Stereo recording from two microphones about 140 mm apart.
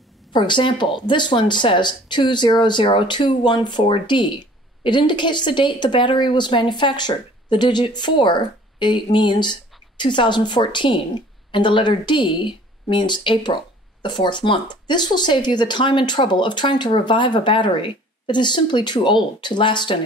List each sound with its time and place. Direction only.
0.3 s a woman's voice: 35° left (ahead or behind)